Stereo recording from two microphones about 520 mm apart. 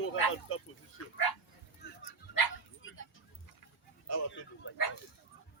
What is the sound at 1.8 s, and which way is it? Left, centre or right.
Dog, centre.